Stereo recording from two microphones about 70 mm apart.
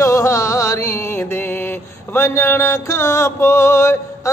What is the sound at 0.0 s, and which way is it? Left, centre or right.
Music, left.